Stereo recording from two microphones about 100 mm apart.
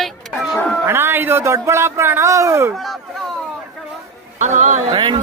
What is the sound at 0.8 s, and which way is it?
Speech, 20° right (ahead or behind).